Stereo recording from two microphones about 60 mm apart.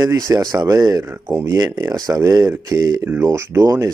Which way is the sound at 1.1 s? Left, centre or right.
Right.